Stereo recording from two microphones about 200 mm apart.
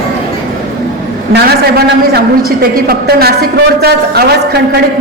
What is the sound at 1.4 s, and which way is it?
A man's voice, 50° right (ahead or behind).